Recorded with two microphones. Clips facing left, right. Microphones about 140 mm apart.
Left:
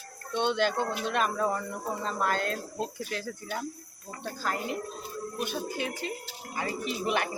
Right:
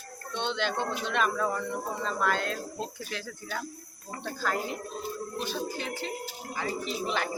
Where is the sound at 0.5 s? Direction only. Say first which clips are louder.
Left 3 dB; 45° left (ahead or behind).